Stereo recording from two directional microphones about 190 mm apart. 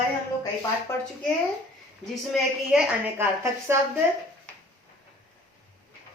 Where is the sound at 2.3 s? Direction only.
5° right (ahead or behind).